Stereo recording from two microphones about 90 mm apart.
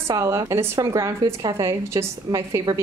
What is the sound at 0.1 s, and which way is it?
A woman's voice, 35° right (ahead or behind).